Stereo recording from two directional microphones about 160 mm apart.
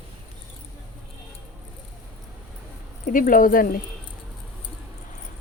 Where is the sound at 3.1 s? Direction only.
60° left (ahead or behind).